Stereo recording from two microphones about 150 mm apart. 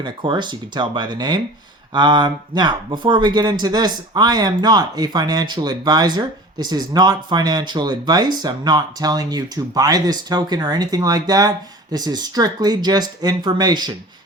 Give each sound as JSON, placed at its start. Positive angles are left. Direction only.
{"t": 0.0, "sound": "speech", "side_deg": -30}